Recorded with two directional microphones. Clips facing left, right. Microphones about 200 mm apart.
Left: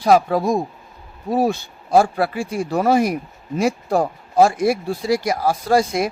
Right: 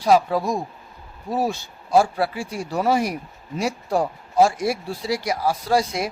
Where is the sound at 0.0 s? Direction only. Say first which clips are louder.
Left 3 dB; 55° left (ahead or behind).